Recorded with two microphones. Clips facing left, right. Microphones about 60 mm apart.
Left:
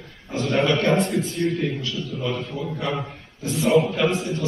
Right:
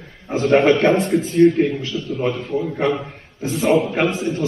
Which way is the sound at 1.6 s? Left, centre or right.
Right.